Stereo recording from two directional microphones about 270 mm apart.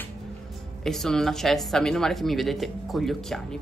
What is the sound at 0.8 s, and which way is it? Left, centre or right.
Speech, centre.